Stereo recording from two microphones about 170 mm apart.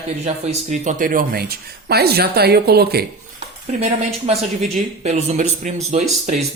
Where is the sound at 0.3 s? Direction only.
45° right (ahead or behind); by 3.1 s 65° right (ahead or behind).